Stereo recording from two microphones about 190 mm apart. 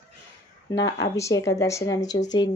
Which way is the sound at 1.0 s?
15° left (ahead or behind).